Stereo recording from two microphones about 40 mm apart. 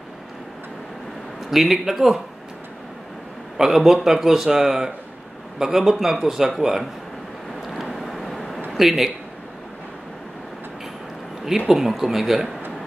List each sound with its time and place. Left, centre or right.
1.5 s a man's voice: centre
3.5 s a man's voice: centre
7.6 s vehicle: centre
8.7 s speech: centre
11.5 s a man's voice: centre